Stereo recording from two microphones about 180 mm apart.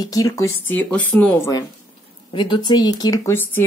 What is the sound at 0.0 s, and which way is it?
Speech, 20° left (ahead or behind).